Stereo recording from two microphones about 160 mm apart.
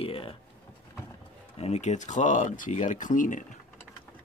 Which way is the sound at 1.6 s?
45° left (ahead or behind).